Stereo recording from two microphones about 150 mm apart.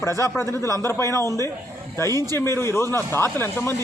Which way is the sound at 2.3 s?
15° left (ahead or behind).